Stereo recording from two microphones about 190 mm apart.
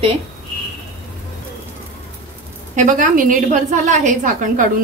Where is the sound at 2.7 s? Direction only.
45° right (ahead or behind).